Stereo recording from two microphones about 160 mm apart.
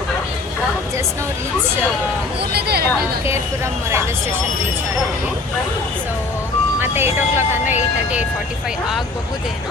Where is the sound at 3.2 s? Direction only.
15° right (ahead or behind).